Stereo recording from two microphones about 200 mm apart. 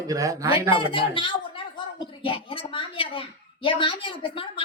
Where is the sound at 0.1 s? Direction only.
15° right (ahead or behind).